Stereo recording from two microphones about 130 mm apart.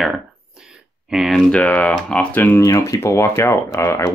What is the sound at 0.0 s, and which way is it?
Speech, 5° right (ahead or behind).